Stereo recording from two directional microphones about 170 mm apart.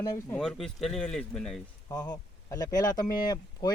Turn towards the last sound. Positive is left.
turn(degrees=25)  # may be behind; listen again after turning